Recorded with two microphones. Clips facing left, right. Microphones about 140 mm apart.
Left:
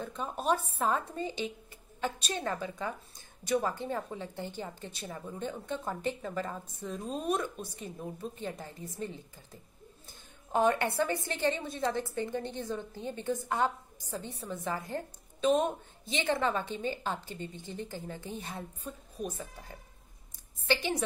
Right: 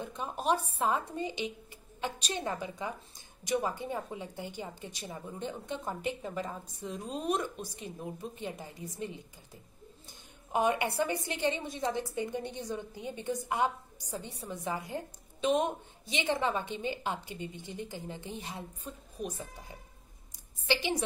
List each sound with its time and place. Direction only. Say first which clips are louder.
0.0 s a woman's voice: even; 15° right (ahead or behind)
10.5 s a woman's voice: left 2 dB; 15° right (ahead or behind)
20.6 s a woman's voice: left 1 dB; 50° left (ahead or behind)